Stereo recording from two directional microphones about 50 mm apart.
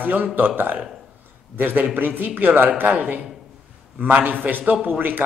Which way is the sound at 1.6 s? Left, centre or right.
Right.